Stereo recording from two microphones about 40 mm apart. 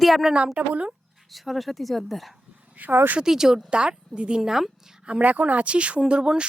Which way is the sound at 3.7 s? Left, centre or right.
Right.